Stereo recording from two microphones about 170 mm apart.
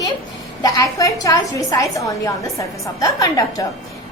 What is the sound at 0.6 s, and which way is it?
A woman's voice, 20° left (ahead or behind).